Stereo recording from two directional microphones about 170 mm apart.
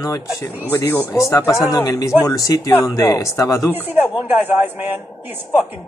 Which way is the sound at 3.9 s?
10° right (ahead or behind).